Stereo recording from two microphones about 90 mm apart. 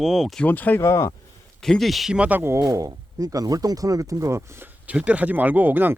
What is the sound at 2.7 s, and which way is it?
Speech, 40° right (ahead or behind).